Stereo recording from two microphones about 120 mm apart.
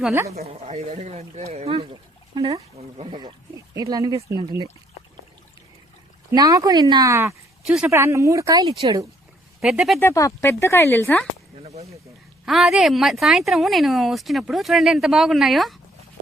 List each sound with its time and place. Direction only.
0.3 s speech: 60° right (ahead or behind)
3.8 s speech: 30° right (ahead or behind)
6.3 s speech: 30° right (ahead or behind)
9.6 s speech: 5° right (ahead or behind)
10.0 s speech: 25° left (ahead or behind)
11.6 s speech: 60° right (ahead or behind)
12.5 s speech: centre (ahead or behind)